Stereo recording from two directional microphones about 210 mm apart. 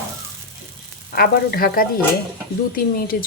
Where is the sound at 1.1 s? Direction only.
45° left (ahead or behind).